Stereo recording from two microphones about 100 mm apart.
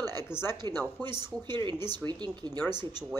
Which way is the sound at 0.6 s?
45° right (ahead or behind).